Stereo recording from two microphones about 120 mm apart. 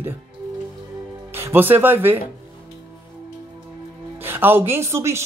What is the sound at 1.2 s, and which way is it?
Speech, 20° right (ahead or behind).